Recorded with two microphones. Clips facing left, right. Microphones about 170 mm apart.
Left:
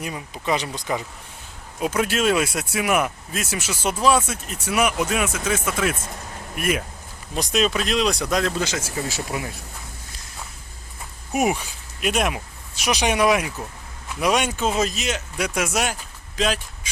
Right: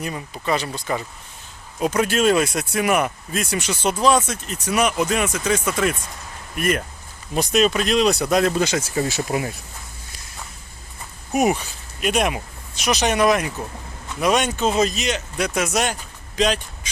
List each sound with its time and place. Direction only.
0.0 s speech: 5° left (ahead or behind)
8.5 s speech: 55° right (ahead or behind)
11.3 s speech: 5° left (ahead or behind)